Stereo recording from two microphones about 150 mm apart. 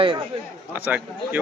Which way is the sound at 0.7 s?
10° right (ahead or behind).